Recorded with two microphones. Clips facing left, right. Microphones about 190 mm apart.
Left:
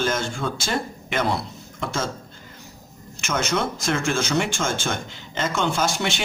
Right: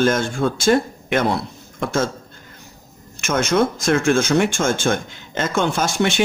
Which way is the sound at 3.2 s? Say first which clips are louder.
Right 6 dB; 50° right (ahead or behind).